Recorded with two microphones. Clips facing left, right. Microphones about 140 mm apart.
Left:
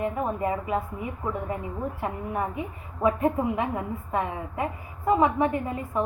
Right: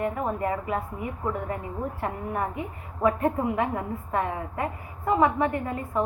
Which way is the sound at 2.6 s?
20° left (ahead or behind).